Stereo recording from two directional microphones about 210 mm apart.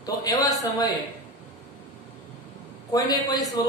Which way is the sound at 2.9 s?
20° left (ahead or behind).